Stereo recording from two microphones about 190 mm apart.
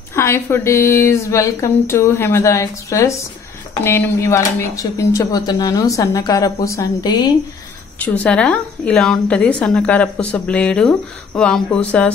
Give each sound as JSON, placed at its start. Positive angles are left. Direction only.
{"t": 0.1, "sound": "speech", "side_deg": 15}
{"t": 8.0, "sound": "a woman's voice", "side_deg": 5}